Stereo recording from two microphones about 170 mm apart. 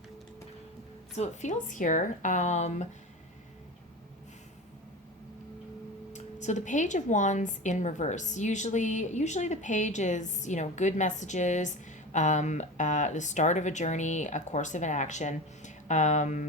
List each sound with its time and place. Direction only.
1.1 s speech: 45° left (ahead or behind)
6.1 s speech: 45° left (ahead or behind)